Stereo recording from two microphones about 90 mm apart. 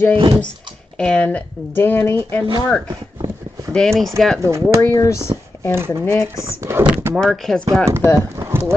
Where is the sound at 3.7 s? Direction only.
5° left (ahead or behind).